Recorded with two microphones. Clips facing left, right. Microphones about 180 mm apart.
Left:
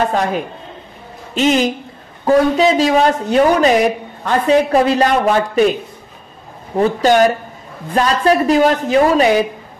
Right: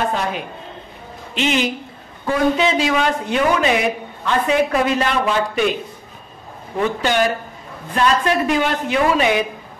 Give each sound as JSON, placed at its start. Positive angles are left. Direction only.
{"t": 0.1, "sound": "speech", "side_deg": 45}